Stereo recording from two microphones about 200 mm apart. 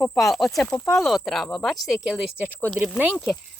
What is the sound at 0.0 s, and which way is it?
Speech, 5° left (ahead or behind).